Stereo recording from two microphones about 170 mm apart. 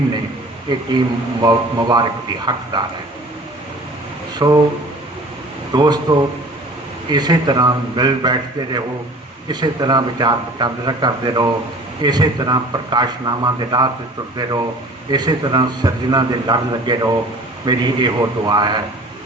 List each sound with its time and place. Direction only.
0.7 s a man's voice: 25° right (ahead or behind)
4.4 s speech: 25° right (ahead or behind)
5.7 s a man's voice: 25° right (ahead or behind)
15.1 s a man's voice: 25° right (ahead or behind)